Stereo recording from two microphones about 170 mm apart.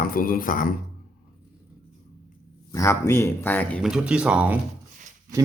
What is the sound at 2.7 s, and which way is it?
Speech, 15° left (ahead or behind).